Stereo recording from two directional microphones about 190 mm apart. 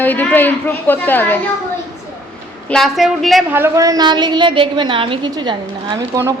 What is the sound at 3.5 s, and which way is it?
A woman's voice, 15° right (ahead or behind).